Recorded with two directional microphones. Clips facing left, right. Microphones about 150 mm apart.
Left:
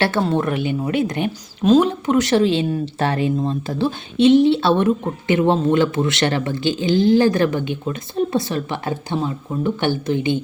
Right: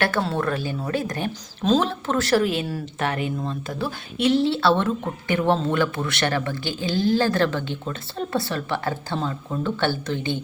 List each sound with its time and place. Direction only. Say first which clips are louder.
0.0 s speech: left 4 dB; 20° left (ahead or behind)